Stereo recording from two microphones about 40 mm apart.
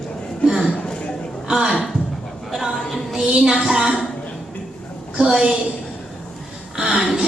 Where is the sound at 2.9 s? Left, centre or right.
Centre.